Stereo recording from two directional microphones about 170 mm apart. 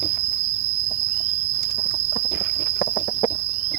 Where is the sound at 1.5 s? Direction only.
75° left (ahead or behind).